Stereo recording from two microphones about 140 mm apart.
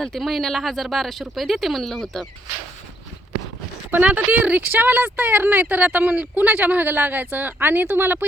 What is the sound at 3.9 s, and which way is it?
Speech, 10° right (ahead or behind).